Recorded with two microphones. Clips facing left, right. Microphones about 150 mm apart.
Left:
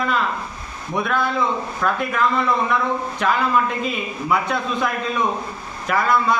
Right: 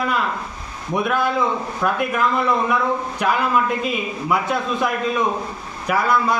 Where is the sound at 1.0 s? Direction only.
10° right (ahead or behind).